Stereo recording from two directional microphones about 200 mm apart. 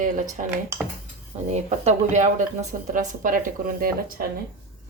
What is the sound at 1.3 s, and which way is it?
Speech, 35° right (ahead or behind).